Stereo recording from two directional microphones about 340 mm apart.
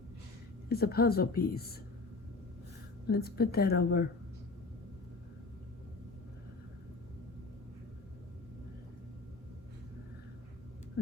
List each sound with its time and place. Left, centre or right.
0.7 s a woman's voice: left
3.1 s a woman's voice: left